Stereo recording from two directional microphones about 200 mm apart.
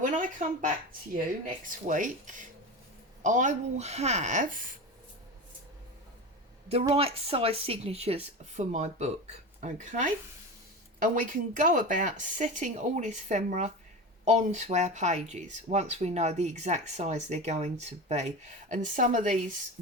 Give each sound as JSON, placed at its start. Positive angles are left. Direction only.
{"t": 0.0, "sound": "a sound", "side_deg": -40}
{"t": 1.1, "sound": "speech", "side_deg": -40}
{"t": 6.8, "sound": "speech", "side_deg": -30}